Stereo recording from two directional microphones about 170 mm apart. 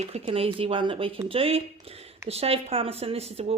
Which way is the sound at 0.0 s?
35° right (ahead or behind).